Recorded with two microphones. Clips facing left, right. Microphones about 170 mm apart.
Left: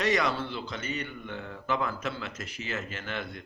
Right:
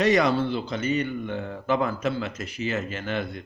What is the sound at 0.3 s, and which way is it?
Speech, 50° right (ahead or behind).